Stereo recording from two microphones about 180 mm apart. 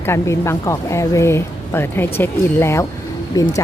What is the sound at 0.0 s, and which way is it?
Speech, 15° left (ahead or behind).